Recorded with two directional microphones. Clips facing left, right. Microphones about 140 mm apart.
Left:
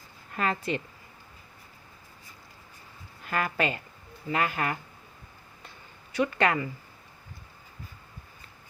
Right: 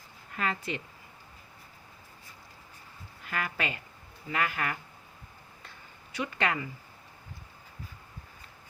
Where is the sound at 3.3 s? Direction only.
40° left (ahead or behind).